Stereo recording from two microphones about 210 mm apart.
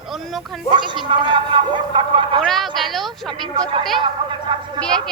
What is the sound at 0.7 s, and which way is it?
A man's voice, 20° right (ahead or behind).